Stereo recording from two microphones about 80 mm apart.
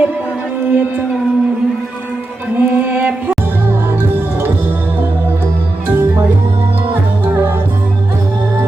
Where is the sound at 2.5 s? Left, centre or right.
Right.